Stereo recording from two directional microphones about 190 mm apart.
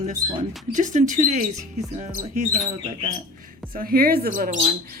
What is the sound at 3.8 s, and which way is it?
Speech, 50° right (ahead or behind).